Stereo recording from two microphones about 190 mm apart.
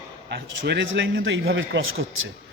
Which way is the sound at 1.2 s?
70° right (ahead or behind).